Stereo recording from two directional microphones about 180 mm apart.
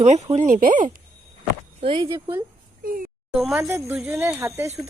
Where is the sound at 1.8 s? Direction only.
30° right (ahead or behind).